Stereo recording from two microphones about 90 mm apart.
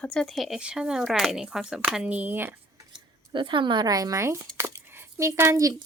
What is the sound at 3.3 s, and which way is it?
Speech, 65° right (ahead or behind).